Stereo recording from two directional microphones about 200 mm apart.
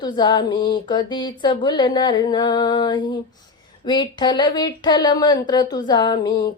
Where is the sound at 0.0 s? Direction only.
20° left (ahead or behind).